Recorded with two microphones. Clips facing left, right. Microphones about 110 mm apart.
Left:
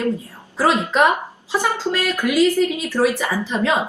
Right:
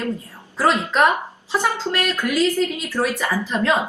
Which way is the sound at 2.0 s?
10° left (ahead or behind).